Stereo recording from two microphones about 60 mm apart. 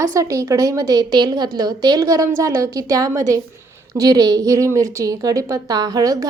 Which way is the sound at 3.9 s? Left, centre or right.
Right.